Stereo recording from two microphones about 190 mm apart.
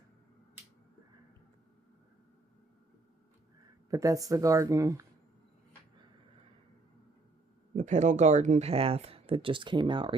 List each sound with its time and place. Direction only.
3.8 s speech: 15° right (ahead or behind)
7.8 s speech: 40° right (ahead or behind)